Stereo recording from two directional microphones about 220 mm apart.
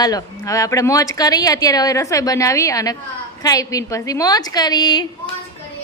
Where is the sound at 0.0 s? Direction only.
15° left (ahead or behind).